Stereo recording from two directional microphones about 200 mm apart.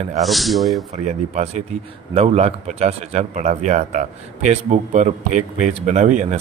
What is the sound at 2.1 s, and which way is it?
Speech, 30° right (ahead or behind).